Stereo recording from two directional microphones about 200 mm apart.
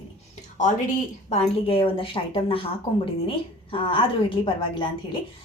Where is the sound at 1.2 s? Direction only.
30° left (ahead or behind).